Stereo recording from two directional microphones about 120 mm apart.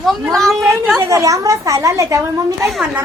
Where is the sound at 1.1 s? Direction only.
30° right (ahead or behind).